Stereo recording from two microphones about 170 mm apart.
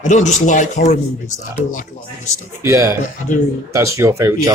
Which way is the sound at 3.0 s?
45° left (ahead or behind).